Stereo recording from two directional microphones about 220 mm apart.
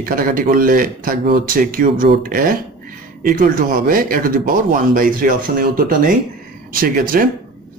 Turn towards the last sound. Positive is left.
turn(degrees=-40)  # may be behind; listen again after turning